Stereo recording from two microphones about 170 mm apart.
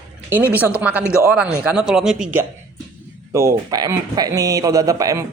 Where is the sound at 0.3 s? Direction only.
10° right (ahead or behind).